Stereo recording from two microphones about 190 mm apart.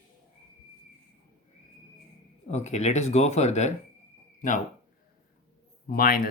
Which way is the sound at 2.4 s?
35° left (ahead or behind).